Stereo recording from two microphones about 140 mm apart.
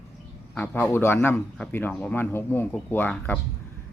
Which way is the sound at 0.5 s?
10° left (ahead or behind).